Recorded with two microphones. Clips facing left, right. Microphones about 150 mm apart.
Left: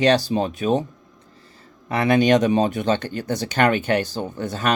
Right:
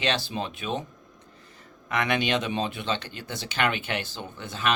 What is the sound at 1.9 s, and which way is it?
Speech, 35° left (ahead or behind).